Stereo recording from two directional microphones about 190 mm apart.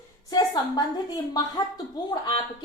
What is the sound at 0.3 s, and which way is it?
A woman's voice, 20° left (ahead or behind).